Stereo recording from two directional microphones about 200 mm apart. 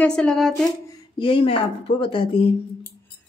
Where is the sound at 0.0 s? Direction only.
5° left (ahead or behind).